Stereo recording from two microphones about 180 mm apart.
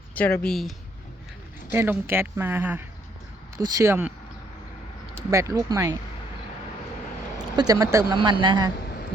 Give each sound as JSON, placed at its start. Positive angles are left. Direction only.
{"t": 0.2, "sound": "speech", "side_deg": 10}
{"t": 1.7, "sound": "speech", "side_deg": -10}
{"t": 5.3, "sound": "speech", "side_deg": -20}
{"t": 7.3, "sound": "speech", "side_deg": -20}